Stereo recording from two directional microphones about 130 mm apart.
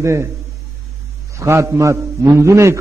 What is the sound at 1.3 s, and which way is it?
A man's voice, 20° right (ahead or behind).